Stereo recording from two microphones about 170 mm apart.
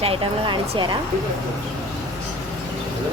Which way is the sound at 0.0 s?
30° right (ahead or behind).